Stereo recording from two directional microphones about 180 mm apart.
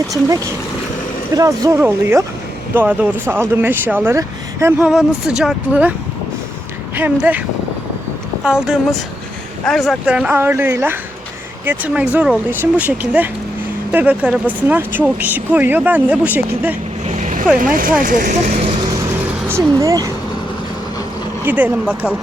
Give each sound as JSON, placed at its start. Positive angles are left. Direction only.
{"t": 0.1, "sound": "speech", "side_deg": -20}
{"t": 4.9, "sound": "speech", "side_deg": -5}
{"t": 6.9, "sound": "speech", "side_deg": -10}
{"t": 8.4, "sound": "speech", "side_deg": -5}
{"t": 17.2, "sound": "vehicle", "side_deg": -45}
{"t": 18.0, "sound": "speech", "side_deg": -50}
{"t": 19.5, "sound": "speech", "side_deg": -15}
{"t": 21.4, "sound": "speech", "side_deg": -10}